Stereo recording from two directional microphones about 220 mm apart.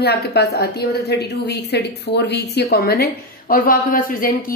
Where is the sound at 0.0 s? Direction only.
50° left (ahead or behind).